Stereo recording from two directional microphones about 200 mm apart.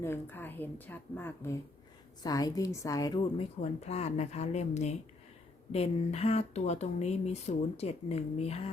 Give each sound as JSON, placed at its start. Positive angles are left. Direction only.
{"t": 0.0, "sound": "a woman's voice", "side_deg": 10}
{"t": 3.6, "sound": "speech", "side_deg": 30}